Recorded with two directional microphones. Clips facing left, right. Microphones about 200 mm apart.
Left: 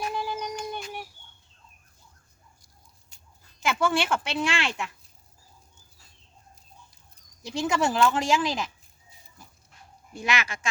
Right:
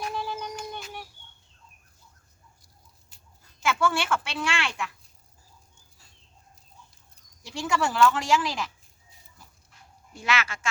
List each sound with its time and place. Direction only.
0.0 s a sound: 10° left (ahead or behind)
3.6 s speech: 20° left (ahead or behind)
7.4 s speech: 20° left (ahead or behind)
10.2 s speech: 15° left (ahead or behind)